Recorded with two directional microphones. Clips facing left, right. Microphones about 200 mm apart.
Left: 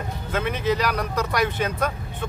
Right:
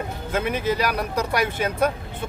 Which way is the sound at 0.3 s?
10° right (ahead or behind).